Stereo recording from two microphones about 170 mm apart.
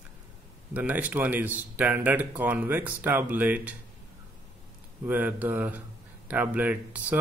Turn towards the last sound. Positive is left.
turn(degrees=-10)  # may be behind; listen again after turning